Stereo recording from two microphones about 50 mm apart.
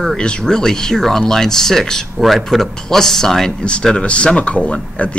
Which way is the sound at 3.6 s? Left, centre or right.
Centre.